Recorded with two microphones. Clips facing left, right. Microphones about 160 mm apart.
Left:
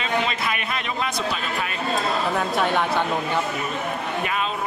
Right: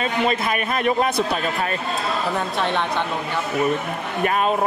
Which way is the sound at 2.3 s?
5° left (ahead or behind).